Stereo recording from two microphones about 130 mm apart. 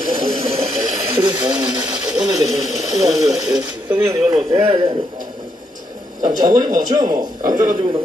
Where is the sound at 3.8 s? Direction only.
20° right (ahead or behind).